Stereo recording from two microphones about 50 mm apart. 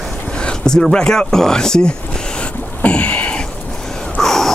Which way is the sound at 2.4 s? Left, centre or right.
Left.